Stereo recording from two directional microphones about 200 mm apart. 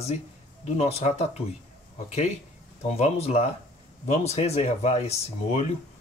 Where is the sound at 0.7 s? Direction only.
30° left (ahead or behind).